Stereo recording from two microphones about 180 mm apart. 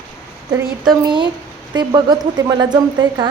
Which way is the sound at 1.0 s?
25° right (ahead or behind).